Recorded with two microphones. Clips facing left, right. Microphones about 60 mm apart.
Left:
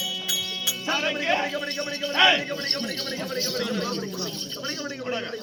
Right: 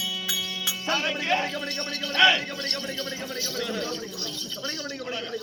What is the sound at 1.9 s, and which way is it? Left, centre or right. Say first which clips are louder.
Speech: even; left.